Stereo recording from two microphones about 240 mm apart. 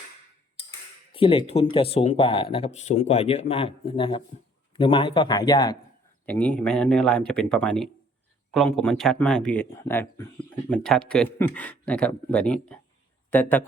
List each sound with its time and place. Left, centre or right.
1.1 s speech: left
6.2 s speech: centre